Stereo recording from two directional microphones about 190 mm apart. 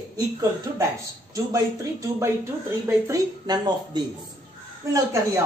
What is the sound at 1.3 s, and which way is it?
Speech, 15° right (ahead or behind).